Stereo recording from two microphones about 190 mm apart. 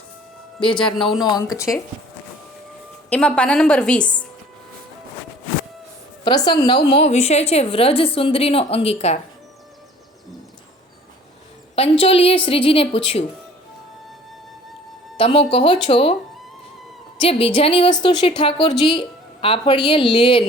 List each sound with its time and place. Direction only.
0.9 s a woman's voice: centre (ahead or behind)
1.2 s a woman's voice: 20° left (ahead or behind)
3.1 s a woman's voice: 5° left (ahead or behind)
6.2 s a woman's voice: 20° left (ahead or behind)
6.9 s a woman's voice: 35° left (ahead or behind)
11.7 s a woman's voice: 30° left (ahead or behind)
15.2 s a woman's voice: 30° left (ahead or behind)
17.2 s a woman's voice: 30° left (ahead or behind)